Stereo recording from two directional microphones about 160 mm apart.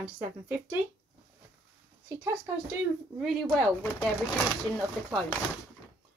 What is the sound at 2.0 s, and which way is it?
Speech, 15° right (ahead or behind).